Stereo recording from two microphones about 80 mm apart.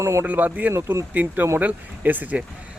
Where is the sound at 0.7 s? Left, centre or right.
Right.